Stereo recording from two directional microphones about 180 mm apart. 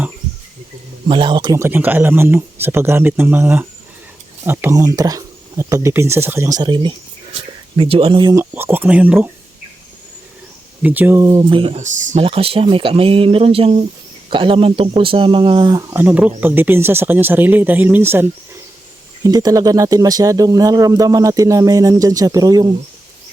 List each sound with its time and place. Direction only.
1.0 s speech: 25° right (ahead or behind); by 9.3 s 10° right (ahead or behind)
10.8 s speech: 10° right (ahead or behind)
11.3 s speech: 25° right (ahead or behind)